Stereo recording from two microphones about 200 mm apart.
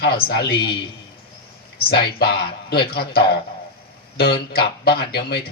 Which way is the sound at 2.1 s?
50° left (ahead or behind).